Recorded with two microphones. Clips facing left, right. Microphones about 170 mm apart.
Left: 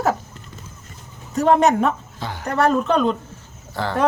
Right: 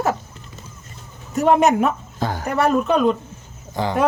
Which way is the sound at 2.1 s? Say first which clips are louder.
Right 6 dB; 45° right (ahead or behind).